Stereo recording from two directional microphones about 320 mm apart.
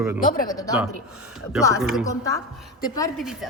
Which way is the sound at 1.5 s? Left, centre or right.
Centre.